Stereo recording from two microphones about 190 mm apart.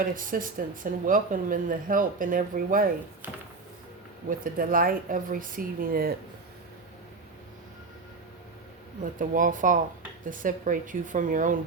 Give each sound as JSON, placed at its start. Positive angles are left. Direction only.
{"t": 0.0, "sound": "speech", "side_deg": -45}
{"t": 4.3, "sound": "speech", "side_deg": -50}
{"t": 9.1, "sound": "speech", "side_deg": -45}